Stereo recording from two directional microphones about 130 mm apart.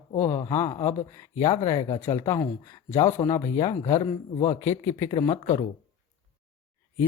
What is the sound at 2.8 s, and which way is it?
Speech, 60° left (ahead or behind).